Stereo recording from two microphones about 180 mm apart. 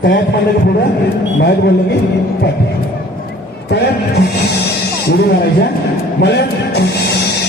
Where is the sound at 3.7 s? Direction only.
65° left (ahead or behind).